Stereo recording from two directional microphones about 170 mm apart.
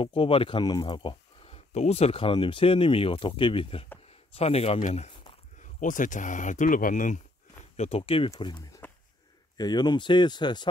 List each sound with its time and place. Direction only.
0.0 s speech: 30° left (ahead or behind); by 7.2 s 50° left (ahead or behind)
7.7 s speech: 40° left (ahead or behind)